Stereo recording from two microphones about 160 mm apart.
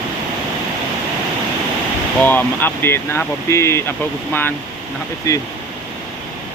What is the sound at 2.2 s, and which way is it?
Speech, 10° left (ahead or behind).